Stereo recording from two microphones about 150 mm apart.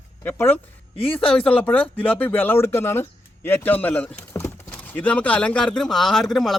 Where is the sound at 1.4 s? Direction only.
10° left (ahead or behind).